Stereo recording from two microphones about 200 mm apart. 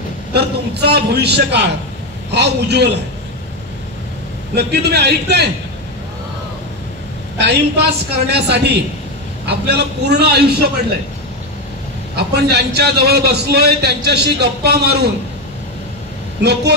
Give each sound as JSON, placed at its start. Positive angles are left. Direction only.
{"t": 0.3, "sound": "a woman's voice", "side_deg": -55}
{"t": 4.6, "sound": "a woman's voice", "side_deg": -55}
{"t": 7.3, "sound": "a woman's voice", "side_deg": -60}
{"t": 12.2, "sound": "a man's voice", "side_deg": -55}